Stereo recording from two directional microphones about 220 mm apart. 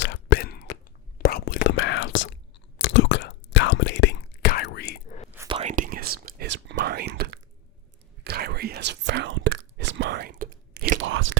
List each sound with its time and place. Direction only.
0.0 s a sound: 50° left (ahead or behind)
1.2 s whispering: 45° left (ahead or behind)
1.8 s whispering: 65° left (ahead or behind); by 5.1 s 45° left (ahead or behind)
5.5 s whispering: 30° right (ahead or behind); by 11.3 s 60° right (ahead or behind)